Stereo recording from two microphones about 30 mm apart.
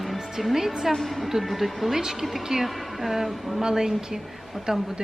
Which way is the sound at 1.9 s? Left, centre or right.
Centre.